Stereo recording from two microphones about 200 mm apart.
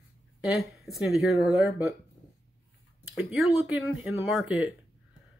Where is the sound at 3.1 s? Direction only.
Centre (ahead or behind).